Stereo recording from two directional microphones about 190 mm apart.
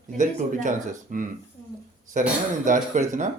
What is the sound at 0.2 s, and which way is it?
Speech, 40° right (ahead or behind).